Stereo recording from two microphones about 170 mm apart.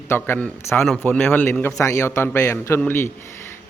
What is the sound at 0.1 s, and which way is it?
A man's voice, 10° left (ahead or behind).